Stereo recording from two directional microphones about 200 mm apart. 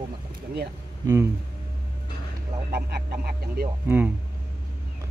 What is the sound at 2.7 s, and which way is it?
Speech, 50° right (ahead or behind).